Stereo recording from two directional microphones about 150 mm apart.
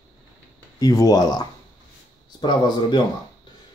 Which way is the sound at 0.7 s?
25° left (ahead or behind).